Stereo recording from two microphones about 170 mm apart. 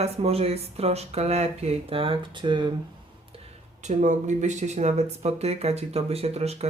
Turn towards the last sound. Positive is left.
turn(degrees=-40)  # may be behind; listen again after turning